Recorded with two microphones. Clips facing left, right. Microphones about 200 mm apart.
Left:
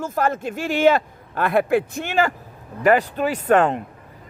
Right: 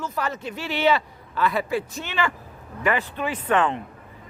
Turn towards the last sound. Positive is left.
turn(degrees=40)  # may be behind; listen again after turning